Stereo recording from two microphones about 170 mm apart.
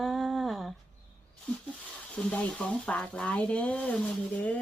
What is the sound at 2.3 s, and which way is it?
A woman's voice, 10° left (ahead or behind).